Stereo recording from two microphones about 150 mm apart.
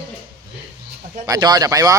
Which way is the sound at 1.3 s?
25° right (ahead or behind).